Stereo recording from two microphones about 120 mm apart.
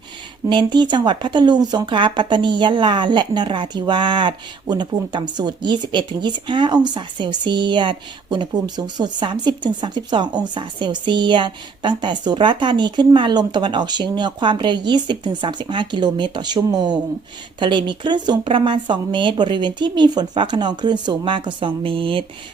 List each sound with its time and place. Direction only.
0.4 s speech: 40° right (ahead or behind)